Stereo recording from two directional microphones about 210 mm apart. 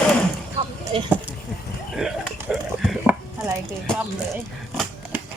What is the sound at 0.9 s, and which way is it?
Speech, 25° right (ahead or behind).